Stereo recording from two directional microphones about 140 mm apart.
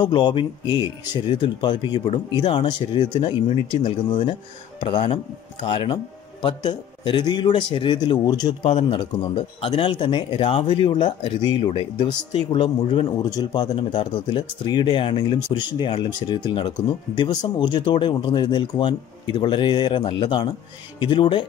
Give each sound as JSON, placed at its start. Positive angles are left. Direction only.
{"t": 0.0, "sound": "speech", "side_deg": 35}